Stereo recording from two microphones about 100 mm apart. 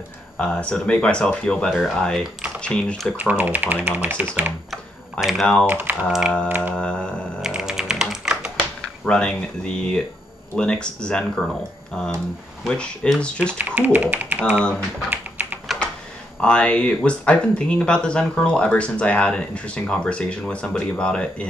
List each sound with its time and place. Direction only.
0.4 s speech: 10° left (ahead or behind)
3.2 s speech: 15° right (ahead or behind)
5.2 s speech: 5° left (ahead or behind)
5.7 s speech: 20° right (ahead or behind)
6.7 s speech: 10° left (ahead or behind)
7.4 s typing: 5° right (ahead or behind)
9.0 s speech: 10° left (ahead or behind)
13.5 s speech: 20° right (ahead or behind)
15.0 s typing: 15° right (ahead or behind)
16.3 s speech: 10° left (ahead or behind)